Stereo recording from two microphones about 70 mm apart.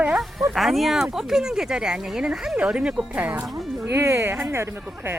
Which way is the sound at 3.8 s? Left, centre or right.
Right.